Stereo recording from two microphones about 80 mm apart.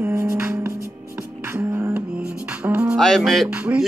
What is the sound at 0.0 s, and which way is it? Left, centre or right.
Music, right.